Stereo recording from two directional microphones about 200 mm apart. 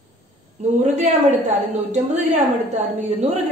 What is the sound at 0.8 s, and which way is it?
A woman's voice, 35° right (ahead or behind).